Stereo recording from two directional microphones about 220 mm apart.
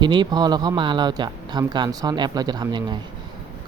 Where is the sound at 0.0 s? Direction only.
20° right (ahead or behind).